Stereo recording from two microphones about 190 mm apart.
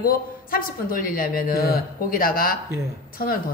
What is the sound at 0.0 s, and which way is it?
Speech, 50° left (ahead or behind).